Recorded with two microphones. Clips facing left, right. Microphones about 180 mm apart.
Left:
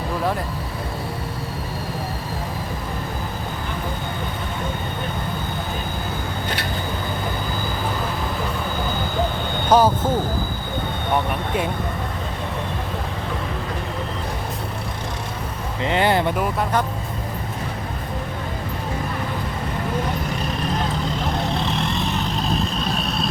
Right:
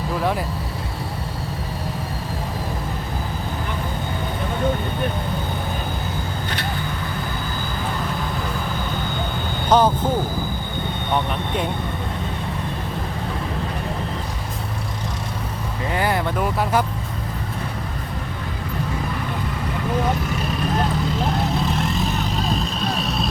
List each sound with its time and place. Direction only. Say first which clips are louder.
9.6 s speech: left 1 dB; 10° left (ahead or behind)
15.9 s speech: left 3 dB; 25° left (ahead or behind)
16.4 s speech: right 1 dB; centre (ahead or behind)
21.6 s vehicle: right 1 dB; centre (ahead or behind)